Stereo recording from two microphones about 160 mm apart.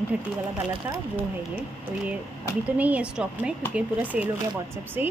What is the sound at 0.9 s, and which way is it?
Speech, 15° right (ahead or behind).